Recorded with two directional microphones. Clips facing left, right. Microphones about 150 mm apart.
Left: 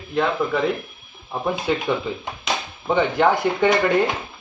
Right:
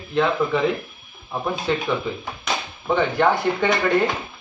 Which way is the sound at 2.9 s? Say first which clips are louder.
Left 1 dB; 10° left (ahead or behind).